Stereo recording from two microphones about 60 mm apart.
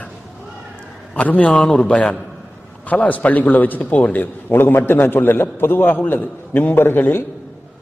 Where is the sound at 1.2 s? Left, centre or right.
Left.